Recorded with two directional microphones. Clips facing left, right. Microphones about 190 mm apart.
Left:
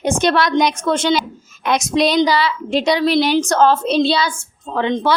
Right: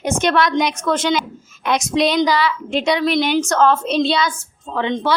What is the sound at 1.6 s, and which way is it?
A woman's voice, 40° left (ahead or behind).